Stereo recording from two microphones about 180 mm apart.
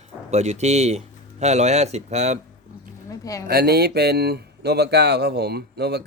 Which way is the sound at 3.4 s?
60° right (ahead or behind).